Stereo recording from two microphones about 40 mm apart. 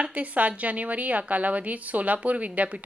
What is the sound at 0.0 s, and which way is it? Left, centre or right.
A woman's voice, right.